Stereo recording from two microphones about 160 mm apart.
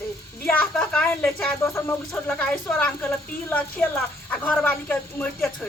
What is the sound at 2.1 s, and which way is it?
Speech, 5° left (ahead or behind).